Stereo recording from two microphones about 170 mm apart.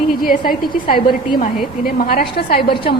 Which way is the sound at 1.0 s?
30° left (ahead or behind).